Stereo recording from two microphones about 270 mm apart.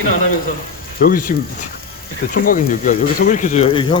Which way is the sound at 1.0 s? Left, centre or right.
Left.